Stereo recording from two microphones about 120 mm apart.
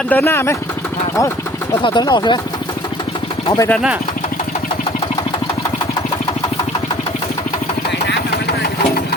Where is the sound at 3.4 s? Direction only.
25° left (ahead or behind).